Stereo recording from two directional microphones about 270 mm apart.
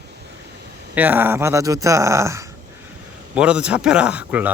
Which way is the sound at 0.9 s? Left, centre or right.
Centre.